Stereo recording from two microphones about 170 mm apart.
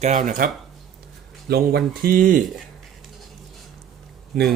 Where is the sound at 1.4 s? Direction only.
70° right (ahead or behind).